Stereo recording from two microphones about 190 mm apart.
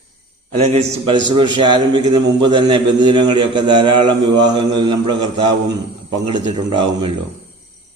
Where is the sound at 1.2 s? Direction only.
25° right (ahead or behind).